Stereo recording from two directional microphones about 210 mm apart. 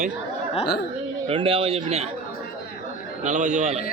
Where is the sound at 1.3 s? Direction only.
25° right (ahead or behind).